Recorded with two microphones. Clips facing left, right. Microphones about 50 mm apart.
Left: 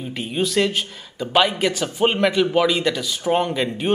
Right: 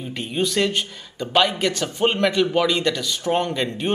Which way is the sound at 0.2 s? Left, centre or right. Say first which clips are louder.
Left 1 dB; centre.